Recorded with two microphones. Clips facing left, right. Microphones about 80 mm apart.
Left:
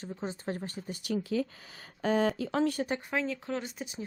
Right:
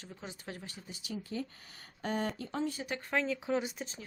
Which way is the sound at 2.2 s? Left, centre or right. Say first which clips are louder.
Left 7 dB; left.